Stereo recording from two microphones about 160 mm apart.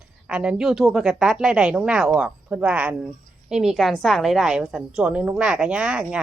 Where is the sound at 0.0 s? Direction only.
5° right (ahead or behind).